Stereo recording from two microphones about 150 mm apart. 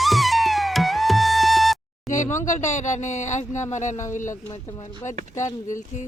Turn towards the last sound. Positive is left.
turn(degrees=55)  # may be behind; listen again after turning